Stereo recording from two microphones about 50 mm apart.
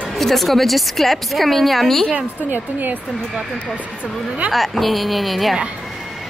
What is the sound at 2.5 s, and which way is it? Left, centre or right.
Speech, right.